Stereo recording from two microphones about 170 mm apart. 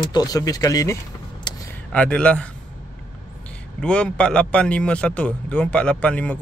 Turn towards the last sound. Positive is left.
turn(degrees=10)  # may be behind; listen again after turning